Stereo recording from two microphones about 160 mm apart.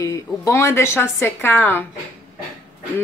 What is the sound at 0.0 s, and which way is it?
A woman's voice, 20° left (ahead or behind).